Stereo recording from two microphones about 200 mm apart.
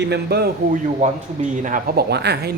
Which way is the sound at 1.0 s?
40° right (ahead or behind).